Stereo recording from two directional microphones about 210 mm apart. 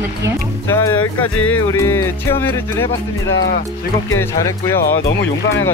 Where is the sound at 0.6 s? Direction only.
10° left (ahead or behind).